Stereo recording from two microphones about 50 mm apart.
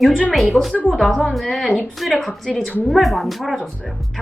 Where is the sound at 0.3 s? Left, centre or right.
Centre.